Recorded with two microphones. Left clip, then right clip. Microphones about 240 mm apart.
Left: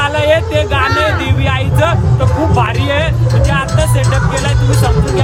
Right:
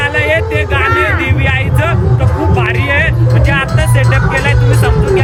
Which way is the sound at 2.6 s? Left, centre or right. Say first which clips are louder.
Right 3 dB; centre.